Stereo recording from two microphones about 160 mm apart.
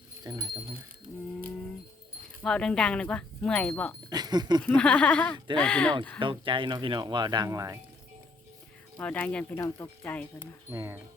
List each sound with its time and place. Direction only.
0.3 s speech: 20° right (ahead or behind)
2.4 s speech: 5° left (ahead or behind)
4.1 s speech: 25° right (ahead or behind)
4.6 s speech: 10° left (ahead or behind)
6.1 s speech: 30° right (ahead or behind)
9.0 s speech: 10° left (ahead or behind)
10.7 s speech: 15° right (ahead or behind)